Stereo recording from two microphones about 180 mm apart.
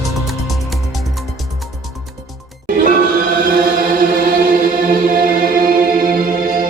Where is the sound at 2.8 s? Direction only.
50° right (ahead or behind).